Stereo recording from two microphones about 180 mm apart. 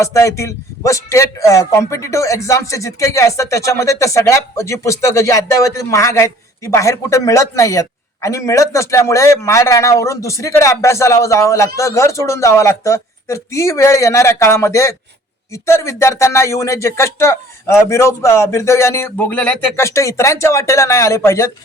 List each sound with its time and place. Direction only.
0.0 s a man's voice: 15° left (ahead or behind)